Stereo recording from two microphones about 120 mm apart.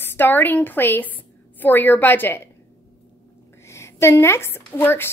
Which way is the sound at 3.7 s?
20° left (ahead or behind).